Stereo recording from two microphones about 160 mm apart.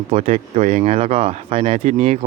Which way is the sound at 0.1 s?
40° right (ahead or behind).